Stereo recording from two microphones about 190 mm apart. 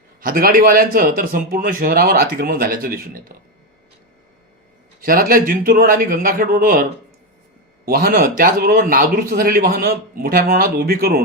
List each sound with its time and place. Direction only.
0.2 s a man's voice: 50° right (ahead or behind)
4.9 s a man's voice: 50° right (ahead or behind)
7.9 s a man's voice: 50° right (ahead or behind)